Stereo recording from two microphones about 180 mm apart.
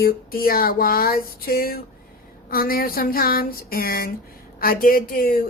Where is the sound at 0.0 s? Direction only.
55° left (ahead or behind).